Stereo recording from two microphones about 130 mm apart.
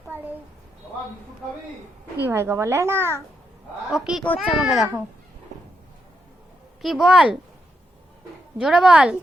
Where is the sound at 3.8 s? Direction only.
5° right (ahead or behind).